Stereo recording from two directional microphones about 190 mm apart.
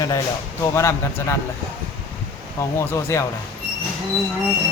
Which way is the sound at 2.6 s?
15° left (ahead or behind).